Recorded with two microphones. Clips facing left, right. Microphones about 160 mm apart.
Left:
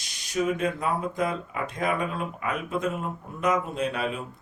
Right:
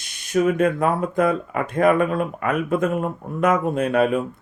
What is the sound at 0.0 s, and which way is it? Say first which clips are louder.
Speech: right 7 dB; 55° right (ahead or behind).